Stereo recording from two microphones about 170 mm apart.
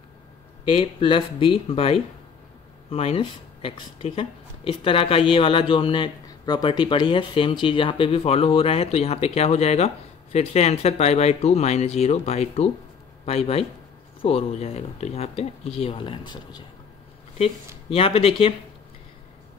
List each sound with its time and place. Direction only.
0.7 s speech: 30° left (ahead or behind)
17.8 s speech: 35° left (ahead or behind)